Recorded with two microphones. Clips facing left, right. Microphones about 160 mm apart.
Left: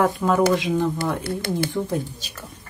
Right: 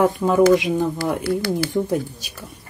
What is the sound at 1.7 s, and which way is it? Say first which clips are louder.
Speech: right 4 dB; 10° right (ahead or behind).